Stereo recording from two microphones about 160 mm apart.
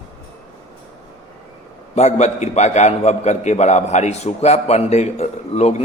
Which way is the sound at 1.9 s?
45° left (ahead or behind).